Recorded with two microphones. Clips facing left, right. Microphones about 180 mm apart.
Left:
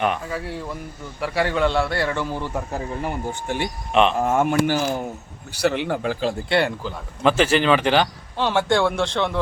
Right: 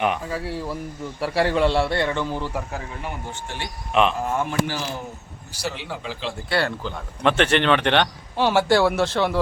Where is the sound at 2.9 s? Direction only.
40° left (ahead or behind).